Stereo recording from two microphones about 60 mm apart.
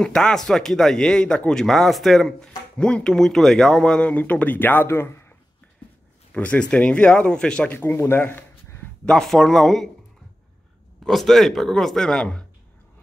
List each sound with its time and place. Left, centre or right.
0.0 s speech: centre
4.1 s speech: left
4.8 s speech: left
6.3 s speech: left
7.8 s speech: left
9.0 s speech: centre
11.1 s speech: centre